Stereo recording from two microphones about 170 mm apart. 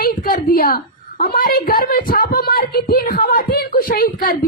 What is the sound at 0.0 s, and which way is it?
A woman's voice, 60° left (ahead or behind).